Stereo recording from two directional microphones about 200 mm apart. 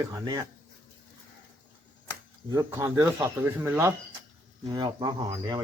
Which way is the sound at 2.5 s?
15° right (ahead or behind).